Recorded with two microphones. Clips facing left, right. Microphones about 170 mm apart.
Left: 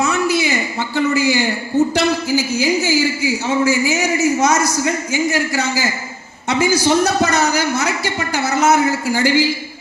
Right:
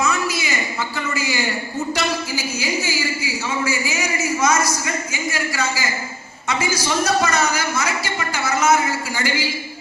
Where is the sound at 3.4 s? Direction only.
40° left (ahead or behind).